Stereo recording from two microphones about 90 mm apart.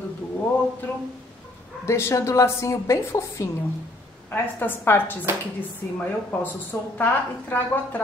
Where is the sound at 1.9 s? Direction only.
30° left (ahead or behind).